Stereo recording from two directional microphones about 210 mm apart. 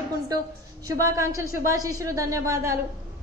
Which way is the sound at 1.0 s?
15° right (ahead or behind).